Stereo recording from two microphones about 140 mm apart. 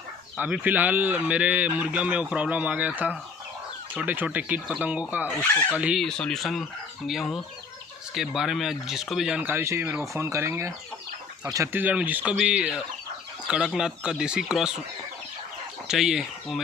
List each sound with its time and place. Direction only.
0.4 s a man's voice: 10° right (ahead or behind)
5.3 s speech: 10° left (ahead or behind)
5.8 s a man's voice: 10° right (ahead or behind)
6.0 s speech: 5° left (ahead or behind)
9.4 s a man's voice: 15° right (ahead or behind)
15.9 s speech: 5° right (ahead or behind)